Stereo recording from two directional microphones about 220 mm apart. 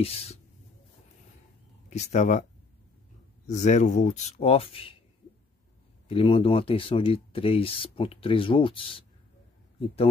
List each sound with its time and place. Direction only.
0.0 s speech: 25° left (ahead or behind)
1.9 s speech: 30° left (ahead or behind)
3.4 s speech: 30° left (ahead or behind)
6.0 s speech: 25° left (ahead or behind)